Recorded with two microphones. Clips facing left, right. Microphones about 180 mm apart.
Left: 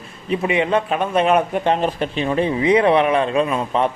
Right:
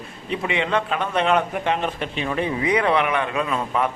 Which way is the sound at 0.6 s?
20° left (ahead or behind).